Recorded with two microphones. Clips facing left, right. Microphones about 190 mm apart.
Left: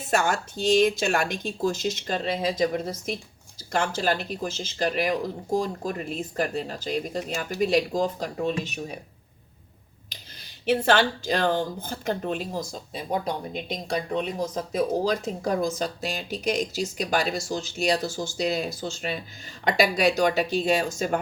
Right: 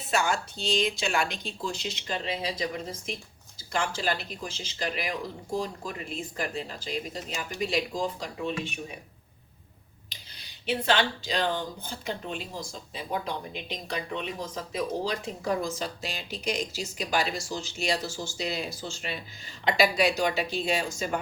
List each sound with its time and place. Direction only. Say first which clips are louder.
0.1 s speech: left 3 dB; 50° left (ahead or behind)
10.4 s speech: left 6 dB; 50° left (ahead or behind)
19.6 s speech: left 2 dB; 45° left (ahead or behind)